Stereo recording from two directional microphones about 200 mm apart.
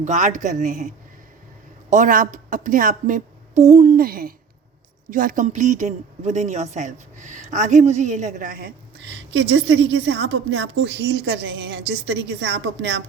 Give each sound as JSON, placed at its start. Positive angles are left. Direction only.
{"t": 0.0, "sound": "speech", "side_deg": -35}
{"t": 9.3, "sound": "a woman's voice", "side_deg": -60}